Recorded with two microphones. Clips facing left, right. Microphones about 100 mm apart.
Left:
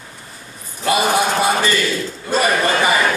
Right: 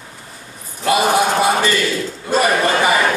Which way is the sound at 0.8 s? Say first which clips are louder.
Right 2 dB; 25° right (ahead or behind).